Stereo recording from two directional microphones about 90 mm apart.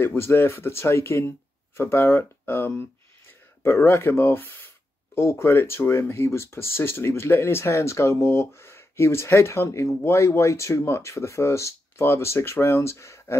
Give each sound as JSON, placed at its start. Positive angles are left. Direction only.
{"t": 0.0, "sound": "speech", "side_deg": 25}